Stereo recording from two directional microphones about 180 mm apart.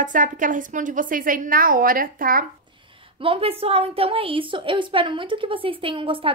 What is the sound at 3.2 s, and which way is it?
A woman's voice, 30° right (ahead or behind).